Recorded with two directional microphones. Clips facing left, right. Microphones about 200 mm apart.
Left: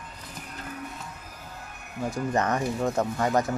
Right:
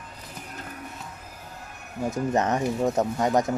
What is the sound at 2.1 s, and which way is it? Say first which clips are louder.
Speech: right 2 dB; 20° right (ahead or behind).